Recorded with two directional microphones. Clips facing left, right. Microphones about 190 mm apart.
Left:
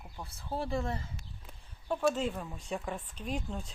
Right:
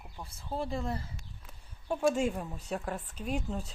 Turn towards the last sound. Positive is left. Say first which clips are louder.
# right 3 dB
turn(degrees=-5)  # may be behind; listen again after turning